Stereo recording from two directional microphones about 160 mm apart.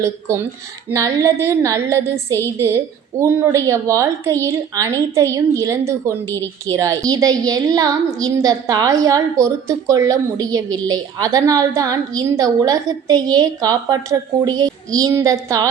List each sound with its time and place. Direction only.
0.0 s a woman's voice: 15° right (ahead or behind)